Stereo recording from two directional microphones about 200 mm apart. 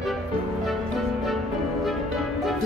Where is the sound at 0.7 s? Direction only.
Centre (ahead or behind).